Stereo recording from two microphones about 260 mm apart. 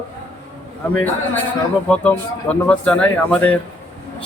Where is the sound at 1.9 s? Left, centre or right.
Centre.